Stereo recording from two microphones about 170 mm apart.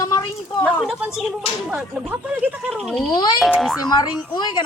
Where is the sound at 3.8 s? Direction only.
25° left (ahead or behind).